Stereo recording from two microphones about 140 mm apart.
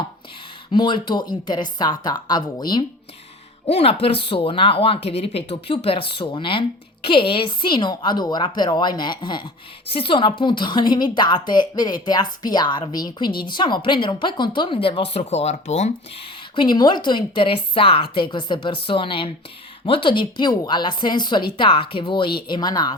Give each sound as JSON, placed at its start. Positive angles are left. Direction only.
{"t": 0.7, "sound": "speech", "side_deg": 35}
{"t": 3.7, "sound": "speech", "side_deg": 45}
{"t": 16.6, "sound": "speech", "side_deg": 30}